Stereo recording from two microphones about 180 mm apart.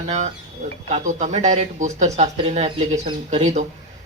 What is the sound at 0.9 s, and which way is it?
Speech, 40° right (ahead or behind).